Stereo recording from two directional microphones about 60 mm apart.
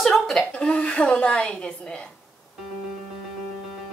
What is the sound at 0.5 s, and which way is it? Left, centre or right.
A woman's voice, left.